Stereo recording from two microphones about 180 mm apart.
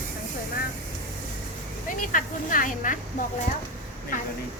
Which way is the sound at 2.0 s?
50° left (ahead or behind).